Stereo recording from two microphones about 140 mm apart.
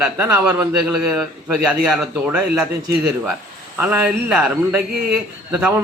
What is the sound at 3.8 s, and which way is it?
A man's voice, 10° right (ahead or behind).